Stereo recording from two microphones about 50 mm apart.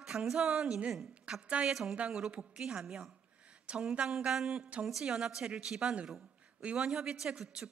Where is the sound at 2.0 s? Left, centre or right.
Centre.